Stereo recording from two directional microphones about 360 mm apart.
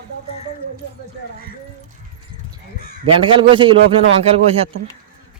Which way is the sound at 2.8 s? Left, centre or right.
Left.